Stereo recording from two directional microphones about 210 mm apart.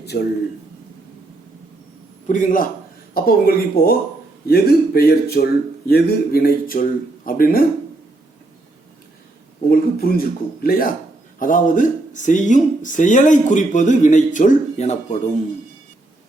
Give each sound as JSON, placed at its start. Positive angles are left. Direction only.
{"t": 0.0, "sound": "a man's voice", "side_deg": 50}
{"t": 2.2, "sound": "speech", "side_deg": 40}
{"t": 9.6, "sound": "speech", "side_deg": 45}